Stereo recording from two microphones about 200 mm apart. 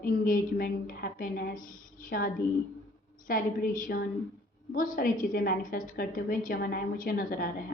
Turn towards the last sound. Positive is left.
turn(degrees=45)  # may be behind; listen again after turning